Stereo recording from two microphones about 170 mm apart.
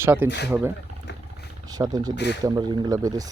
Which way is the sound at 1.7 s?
20° right (ahead or behind).